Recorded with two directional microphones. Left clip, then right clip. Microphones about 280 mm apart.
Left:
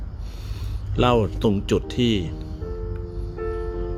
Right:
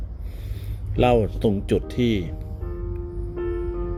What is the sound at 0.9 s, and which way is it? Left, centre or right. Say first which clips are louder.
Speech: right 1 dB; centre.